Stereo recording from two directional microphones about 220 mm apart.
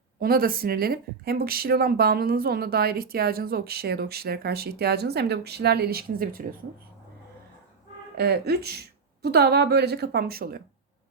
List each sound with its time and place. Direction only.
0.2 s speech: 40° right (ahead or behind)
8.1 s speech: 45° right (ahead or behind)